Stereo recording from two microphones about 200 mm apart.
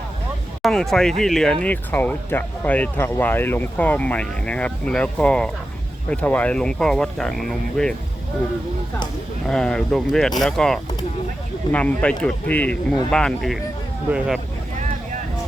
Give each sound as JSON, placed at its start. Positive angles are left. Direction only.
{"t": 0.6, "sound": "speech", "side_deg": 0}
{"t": 9.5, "sound": "speech", "side_deg": 5}